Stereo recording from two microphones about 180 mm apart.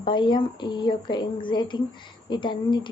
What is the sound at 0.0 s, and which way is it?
A woman's voice, 25° left (ahead or behind).